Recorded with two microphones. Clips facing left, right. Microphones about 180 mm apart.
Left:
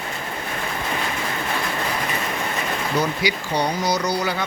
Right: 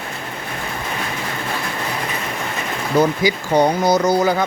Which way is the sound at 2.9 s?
50° right (ahead or behind).